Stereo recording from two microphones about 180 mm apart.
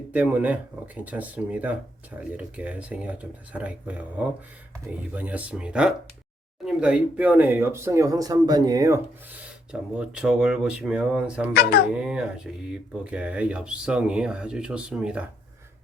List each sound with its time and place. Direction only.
0.1 s speech: 10° right (ahead or behind)
9.9 s speech: 5° right (ahead or behind)
11.5 s speech: 60° left (ahead or behind)
11.9 s speech: 5° right (ahead or behind)